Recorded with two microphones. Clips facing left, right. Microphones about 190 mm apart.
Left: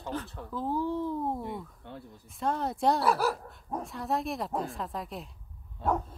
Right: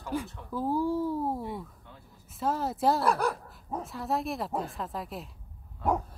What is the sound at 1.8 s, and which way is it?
Speech, 70° left (ahead or behind).